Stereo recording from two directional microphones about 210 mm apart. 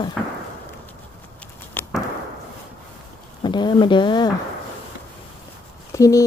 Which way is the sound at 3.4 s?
20° left (ahead or behind).